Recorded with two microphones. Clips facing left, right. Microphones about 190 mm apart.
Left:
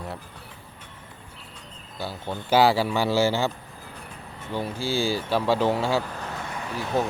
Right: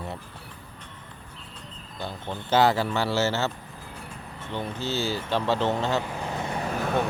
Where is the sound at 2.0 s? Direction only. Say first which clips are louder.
Left 2 dB; 5° left (ahead or behind).